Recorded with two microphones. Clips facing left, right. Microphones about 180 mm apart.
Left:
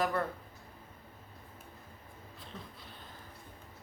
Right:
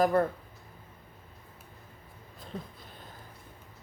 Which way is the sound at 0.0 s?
45° right (ahead or behind).